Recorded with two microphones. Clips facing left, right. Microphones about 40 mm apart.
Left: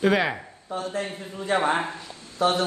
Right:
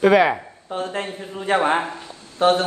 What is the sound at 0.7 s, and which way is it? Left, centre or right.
A man's voice, right.